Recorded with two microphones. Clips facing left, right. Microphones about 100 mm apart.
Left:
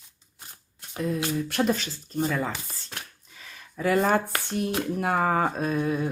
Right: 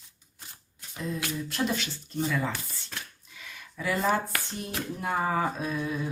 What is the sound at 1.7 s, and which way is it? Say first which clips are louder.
Speech: left 5 dB; 40° left (ahead or behind).